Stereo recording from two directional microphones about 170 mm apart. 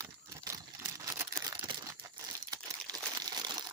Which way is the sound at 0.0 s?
20° right (ahead or behind).